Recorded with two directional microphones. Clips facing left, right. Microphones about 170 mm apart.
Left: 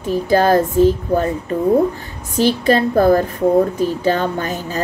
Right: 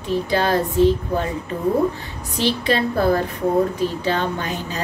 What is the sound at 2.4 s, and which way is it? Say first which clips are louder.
Speech: left 6 dB; 45° left (ahead or behind).